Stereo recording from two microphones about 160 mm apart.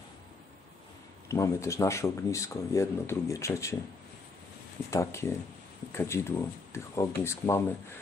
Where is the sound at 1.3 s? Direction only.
20° left (ahead or behind).